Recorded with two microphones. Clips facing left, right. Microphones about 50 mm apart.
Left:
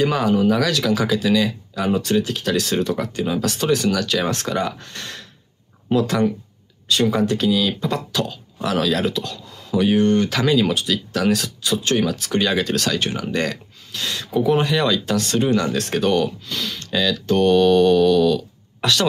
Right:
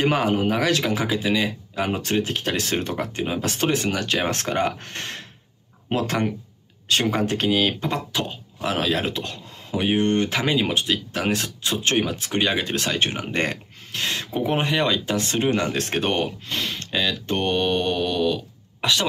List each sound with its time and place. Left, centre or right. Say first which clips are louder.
0.0 s speech: left 3 dB; right